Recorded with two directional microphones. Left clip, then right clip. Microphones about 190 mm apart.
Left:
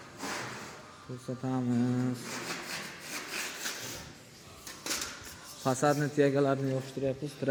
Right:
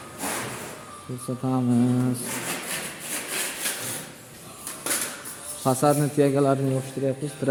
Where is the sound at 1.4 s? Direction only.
Centre (ahead or behind).